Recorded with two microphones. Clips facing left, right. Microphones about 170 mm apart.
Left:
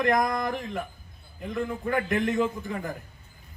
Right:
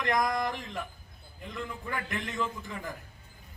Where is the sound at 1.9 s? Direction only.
50° left (ahead or behind).